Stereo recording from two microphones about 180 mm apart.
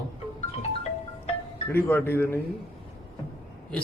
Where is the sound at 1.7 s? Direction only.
10° left (ahead or behind).